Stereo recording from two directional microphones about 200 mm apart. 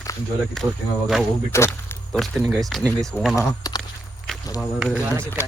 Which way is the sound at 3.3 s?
20° left (ahead or behind).